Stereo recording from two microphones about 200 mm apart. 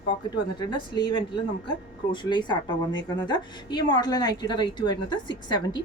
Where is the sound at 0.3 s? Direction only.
20° left (ahead or behind).